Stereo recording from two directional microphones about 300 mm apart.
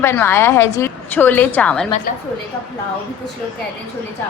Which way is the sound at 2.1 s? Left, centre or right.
Left.